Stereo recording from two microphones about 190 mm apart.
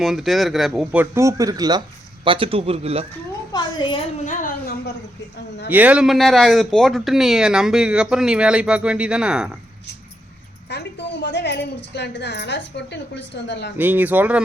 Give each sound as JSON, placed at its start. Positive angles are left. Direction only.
{"t": 0.0, "sound": "speech", "side_deg": 0}
{"t": 1.1, "sound": "speech", "side_deg": -15}
{"t": 3.5, "sound": "a sound", "side_deg": 25}
{"t": 4.3, "sound": "a sound", "side_deg": 45}
{"t": 5.7, "sound": "speech", "side_deg": -5}
{"t": 10.7, "sound": "a woman's voice", "side_deg": 65}
{"t": 13.7, "sound": "speech", "side_deg": -10}